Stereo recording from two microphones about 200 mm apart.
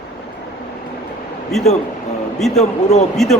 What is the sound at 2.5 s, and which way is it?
Speech, 35° left (ahead or behind).